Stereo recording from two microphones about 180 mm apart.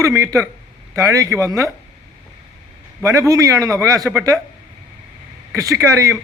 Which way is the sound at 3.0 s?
15° right (ahead or behind).